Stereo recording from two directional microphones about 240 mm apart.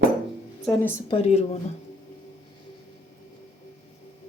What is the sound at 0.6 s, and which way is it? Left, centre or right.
Speech, centre.